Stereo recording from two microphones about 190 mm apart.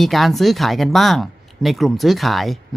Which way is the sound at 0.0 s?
Centre (ahead or behind).